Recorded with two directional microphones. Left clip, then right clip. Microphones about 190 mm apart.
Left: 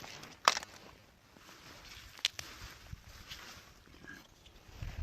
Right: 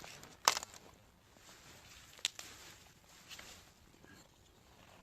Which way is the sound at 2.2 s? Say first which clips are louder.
Left 5 dB; 40° left (ahead or behind).